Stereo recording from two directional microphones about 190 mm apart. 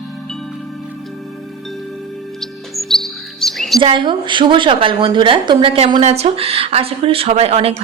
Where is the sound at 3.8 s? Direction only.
25° right (ahead or behind).